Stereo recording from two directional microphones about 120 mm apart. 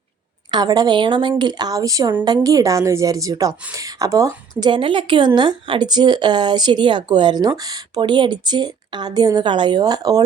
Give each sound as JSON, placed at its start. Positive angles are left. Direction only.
{"t": 0.5, "sound": "a woman's voice", "side_deg": -35}
{"t": 4.6, "sound": "speech", "side_deg": -45}